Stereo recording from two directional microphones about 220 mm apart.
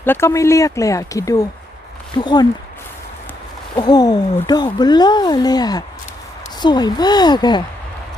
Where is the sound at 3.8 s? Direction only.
20° left (ahead or behind).